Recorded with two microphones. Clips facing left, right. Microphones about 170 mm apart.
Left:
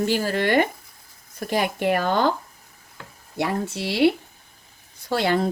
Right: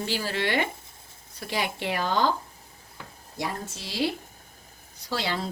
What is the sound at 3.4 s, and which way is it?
Speech, 65° left (ahead or behind).